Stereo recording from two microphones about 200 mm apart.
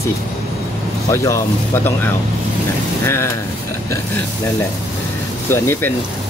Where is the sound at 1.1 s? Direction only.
15° left (ahead or behind).